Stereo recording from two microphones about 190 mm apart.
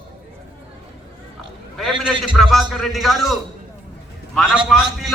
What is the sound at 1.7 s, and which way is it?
A man's voice, centre (ahead or behind).